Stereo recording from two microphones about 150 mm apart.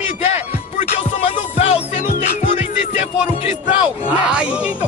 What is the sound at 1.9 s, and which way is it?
Music, 55° left (ahead or behind).